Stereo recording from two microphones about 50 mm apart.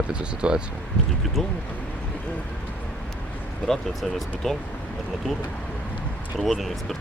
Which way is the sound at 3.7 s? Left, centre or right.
Centre.